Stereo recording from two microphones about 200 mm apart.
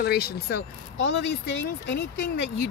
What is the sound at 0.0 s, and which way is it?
Speech, 50° left (ahead or behind).